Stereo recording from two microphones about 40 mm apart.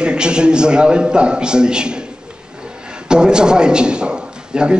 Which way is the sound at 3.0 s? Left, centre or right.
Right.